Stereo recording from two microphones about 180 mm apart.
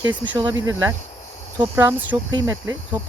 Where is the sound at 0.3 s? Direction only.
20° right (ahead or behind).